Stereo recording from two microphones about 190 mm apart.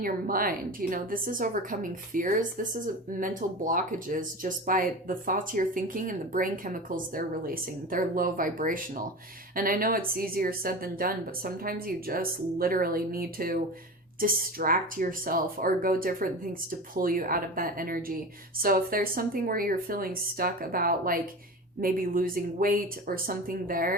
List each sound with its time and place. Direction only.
0.0 s a woman's voice: 50° right (ahead or behind)